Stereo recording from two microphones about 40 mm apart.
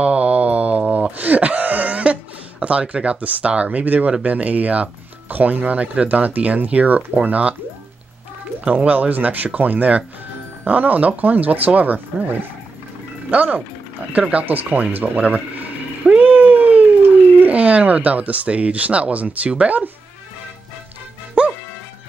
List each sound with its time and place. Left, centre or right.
0.0 s mantra: right
1.1 s a sound: right
2.6 s speech: right
8.7 s speech: right
16.2 s a sound: right
17.4 s speech: right
21.4 s music: right